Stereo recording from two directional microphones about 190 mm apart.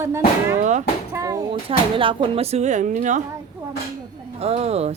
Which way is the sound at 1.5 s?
30° right (ahead or behind).